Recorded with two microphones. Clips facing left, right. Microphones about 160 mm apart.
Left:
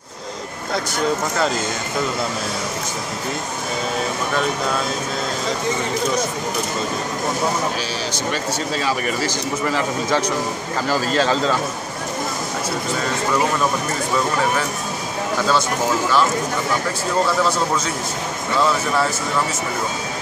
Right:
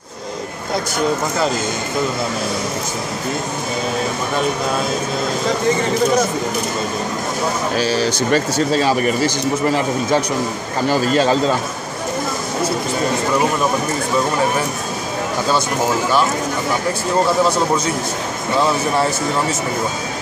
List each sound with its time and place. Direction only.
7.8 s speech: 40° right (ahead or behind)
9.2 s a man's voice: 20° right (ahead or behind)